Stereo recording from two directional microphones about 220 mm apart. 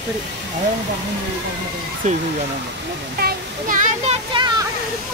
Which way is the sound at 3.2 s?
35° right (ahead or behind).